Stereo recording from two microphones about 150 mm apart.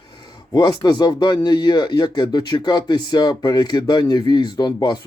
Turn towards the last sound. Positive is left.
turn(degrees=30)  # may be behind; listen again after turning